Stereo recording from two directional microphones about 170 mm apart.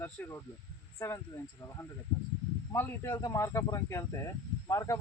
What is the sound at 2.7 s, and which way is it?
Speech, 15° left (ahead or behind).